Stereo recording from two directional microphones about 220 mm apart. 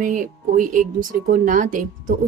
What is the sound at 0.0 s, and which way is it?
A woman's voice, 35° right (ahead or behind).